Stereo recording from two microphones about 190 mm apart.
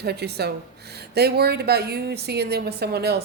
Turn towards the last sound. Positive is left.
turn(degrees=-60)  # may be behind; listen again after turning